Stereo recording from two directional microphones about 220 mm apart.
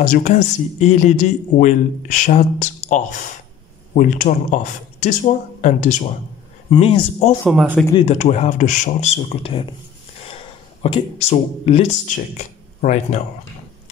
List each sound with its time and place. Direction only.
0.0 s speech: 35° left (ahead or behind)
7.4 s speech: 5° right (ahead or behind)
7.9 s speech: 30° left (ahead or behind)